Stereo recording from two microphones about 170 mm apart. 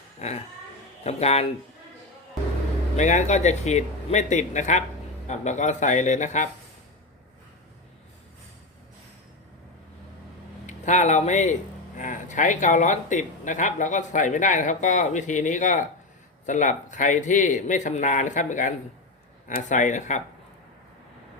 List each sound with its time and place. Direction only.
0.2 s speech: 40° left (ahead or behind)
3.0 s speech: 45° left (ahead or behind)
10.7 s speech: 45° left (ahead or behind)